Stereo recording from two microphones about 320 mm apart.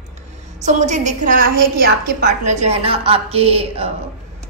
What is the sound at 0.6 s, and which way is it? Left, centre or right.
A woman's voice, right.